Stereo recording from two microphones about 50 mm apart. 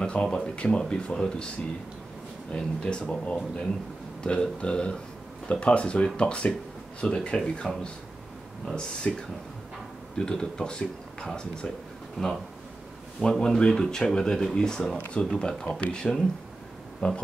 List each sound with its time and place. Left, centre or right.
0.0 s speech: centre
2.5 s speech: centre
9.1 s speech: centre